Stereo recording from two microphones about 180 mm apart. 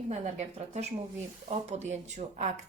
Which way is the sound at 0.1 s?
40° right (ahead or behind).